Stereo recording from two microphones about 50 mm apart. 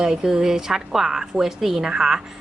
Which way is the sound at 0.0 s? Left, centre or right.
Centre.